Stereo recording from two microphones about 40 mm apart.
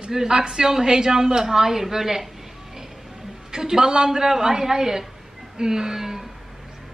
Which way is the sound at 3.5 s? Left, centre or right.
Centre.